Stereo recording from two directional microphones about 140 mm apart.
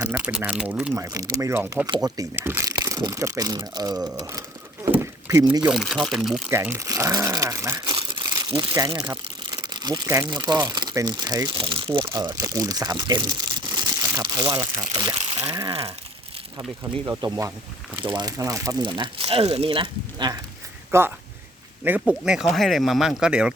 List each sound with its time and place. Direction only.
0.2 s speech: 10° right (ahead or behind)
0.9 s speech: 25° right (ahead or behind)
4.9 s a sound: 15° right (ahead or behind)
5.5 s speech: 5° right (ahead or behind)
6.5 s speech: 15° right (ahead or behind)
9.5 s crumpling: 30° right (ahead or behind)
10.1 s speech: 25° right (ahead or behind)
12.0 s speech: 25° right (ahead or behind)
17.1 s speech: 25° right (ahead or behind)
20.9 s speech: 20° right (ahead or behind)